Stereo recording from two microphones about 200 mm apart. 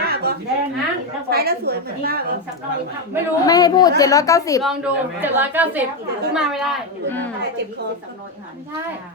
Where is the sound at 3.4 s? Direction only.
20° left (ahead or behind).